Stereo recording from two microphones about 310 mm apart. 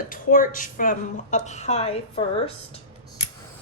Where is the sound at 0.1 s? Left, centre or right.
Left.